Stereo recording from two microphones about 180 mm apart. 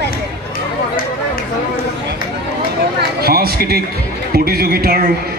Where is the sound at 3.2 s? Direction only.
60° right (ahead or behind).